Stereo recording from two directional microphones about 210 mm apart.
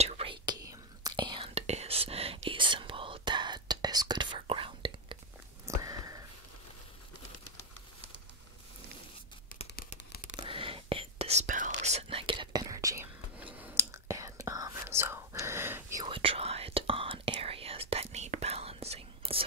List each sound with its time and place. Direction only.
0.0 s whispering: 30° right (ahead or behind)
5.7 s sniff: 15° right (ahead or behind)
9.8 s a sound: 40° left (ahead or behind)
10.3 s whispering: 25° right (ahead or behind)